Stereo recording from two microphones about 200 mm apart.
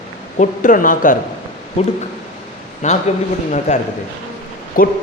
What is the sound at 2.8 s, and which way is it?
Speech, 35° left (ahead or behind).